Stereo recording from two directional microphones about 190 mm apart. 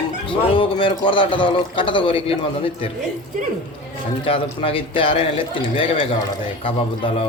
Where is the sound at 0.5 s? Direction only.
25° left (ahead or behind).